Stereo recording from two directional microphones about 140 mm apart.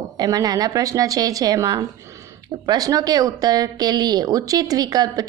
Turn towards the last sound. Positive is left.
turn(degrees=-25)  # may be behind; listen again after turning